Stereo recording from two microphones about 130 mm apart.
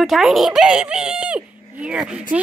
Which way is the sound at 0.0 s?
Centre (ahead or behind).